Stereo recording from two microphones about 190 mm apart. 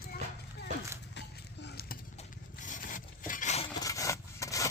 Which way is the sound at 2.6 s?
45° left (ahead or behind).